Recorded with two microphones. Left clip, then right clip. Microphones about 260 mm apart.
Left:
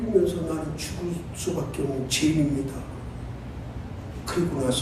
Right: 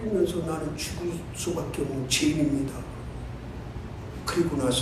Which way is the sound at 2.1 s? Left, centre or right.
Right.